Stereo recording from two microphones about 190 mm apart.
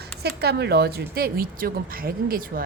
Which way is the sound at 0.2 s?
60° right (ahead or behind).